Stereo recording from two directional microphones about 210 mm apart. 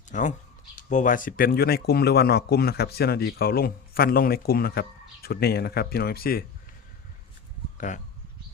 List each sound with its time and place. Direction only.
0.1 s speech: 35° left (ahead or behind)
7.8 s speech: 35° left (ahead or behind)